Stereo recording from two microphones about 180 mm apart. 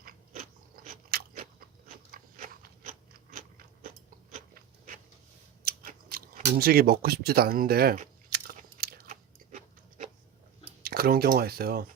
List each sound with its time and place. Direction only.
1.1 s crunch: 60° right (ahead or behind)
2.1 s biting: 50° right (ahead or behind)
5.6 s biting: 55° right (ahead or behind)
6.6 s speech: 55° right (ahead or behind)
8.3 s crunch: 55° right (ahead or behind)
10.8 s speech: 55° right (ahead or behind)